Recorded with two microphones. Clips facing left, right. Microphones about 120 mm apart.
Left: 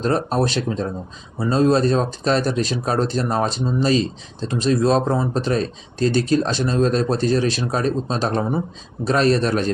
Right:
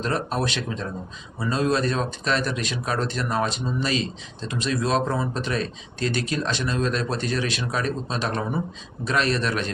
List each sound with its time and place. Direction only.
0.0 s speech: 35° left (ahead or behind)